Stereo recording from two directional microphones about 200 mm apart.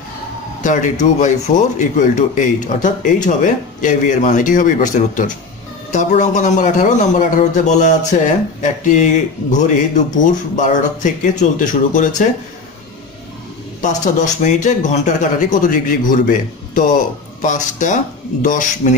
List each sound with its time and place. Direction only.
0.6 s speech: 40° left (ahead or behind)
13.7 s speech: 40° left (ahead or behind)